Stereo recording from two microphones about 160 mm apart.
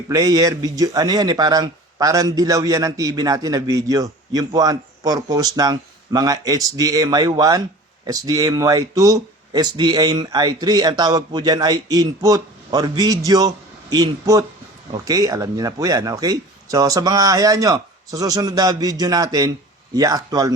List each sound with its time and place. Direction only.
0.1 s speech: 20° right (ahead or behind)